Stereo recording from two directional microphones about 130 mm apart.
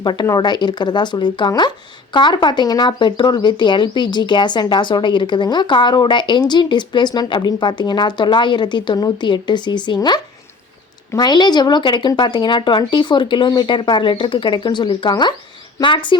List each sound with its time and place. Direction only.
0.0 s speech: 35° left (ahead or behind)